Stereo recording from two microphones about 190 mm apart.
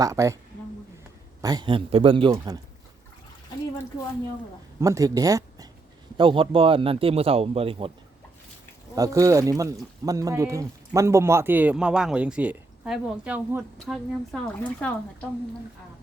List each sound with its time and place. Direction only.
0.0 s speech: 15° right (ahead or behind)
1.4 s speech: 20° right (ahead or behind)
4.8 s speech: 15° right (ahead or behind)
9.0 s speech: 15° right (ahead or behind); by 14.9 s 5° left (ahead or behind)